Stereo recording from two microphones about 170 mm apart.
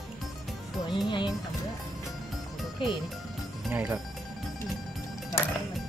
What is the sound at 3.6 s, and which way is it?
Speech, 5° right (ahead or behind).